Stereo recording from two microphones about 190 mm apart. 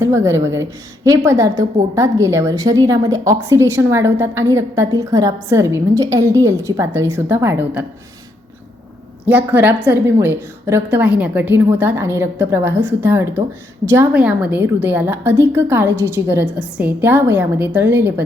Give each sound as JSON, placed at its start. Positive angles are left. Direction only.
{"t": 0.0, "sound": "a woman's voice", "side_deg": -15}
{"t": 9.2, "sound": "a woman's voice", "side_deg": -10}